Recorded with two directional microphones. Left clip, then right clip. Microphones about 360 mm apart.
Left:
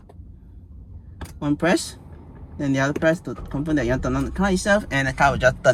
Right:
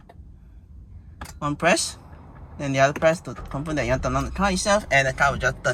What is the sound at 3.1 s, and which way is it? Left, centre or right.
Speech, right.